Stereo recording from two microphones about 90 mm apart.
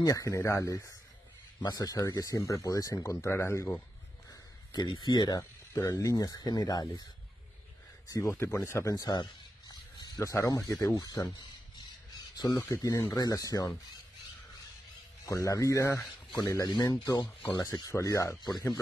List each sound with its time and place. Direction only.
0.0 s speech: 40° left (ahead or behind)
4.7 s speech: 55° left (ahead or behind)
5.7 s speech: 40° left (ahead or behind)
8.3 s speech: 30° left (ahead or behind)
9.1 s a sound: 50° left (ahead or behind)
10.3 s speech: 35° left (ahead or behind)
12.5 s speech: 40° left (ahead or behind)
15.2 s speech: 35° left (ahead or behind)
16.6 s speech: 50° left (ahead or behind)